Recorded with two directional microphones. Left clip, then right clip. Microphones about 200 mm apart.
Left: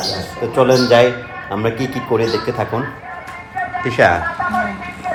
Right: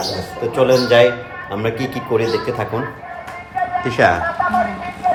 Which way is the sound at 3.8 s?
15° right (ahead or behind).